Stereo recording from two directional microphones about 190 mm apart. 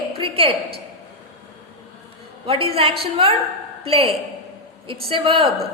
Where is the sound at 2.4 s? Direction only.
30° right (ahead or behind).